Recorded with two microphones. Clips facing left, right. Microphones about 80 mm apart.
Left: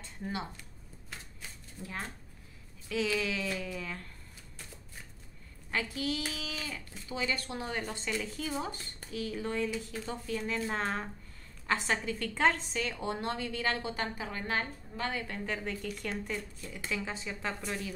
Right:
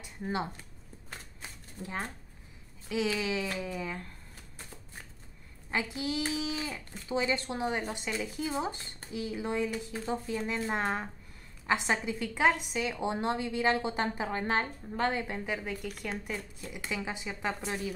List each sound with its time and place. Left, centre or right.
2.9 s a woman's voice: centre
5.7 s a woman's voice: right